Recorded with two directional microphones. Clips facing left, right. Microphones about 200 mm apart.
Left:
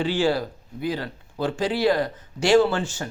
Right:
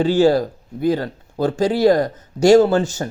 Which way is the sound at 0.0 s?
40° right (ahead or behind).